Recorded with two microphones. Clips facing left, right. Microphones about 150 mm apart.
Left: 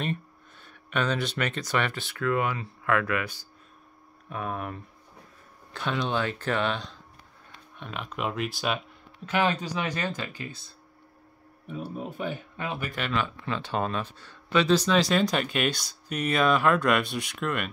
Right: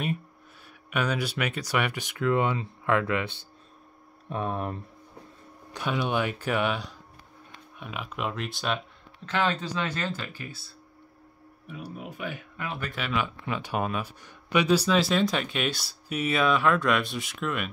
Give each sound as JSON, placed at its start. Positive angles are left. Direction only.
{"t": 0.8, "sound": "speech", "side_deg": -10}
{"t": 5.7, "sound": "speech", "side_deg": -10}
{"t": 11.6, "sound": "speech", "side_deg": 35}
{"t": 12.9, "sound": "speech", "side_deg": -5}